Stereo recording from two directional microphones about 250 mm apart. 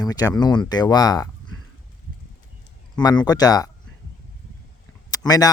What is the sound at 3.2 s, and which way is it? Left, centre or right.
Speech, centre.